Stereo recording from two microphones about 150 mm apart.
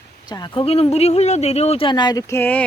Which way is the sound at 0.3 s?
30° left (ahead or behind).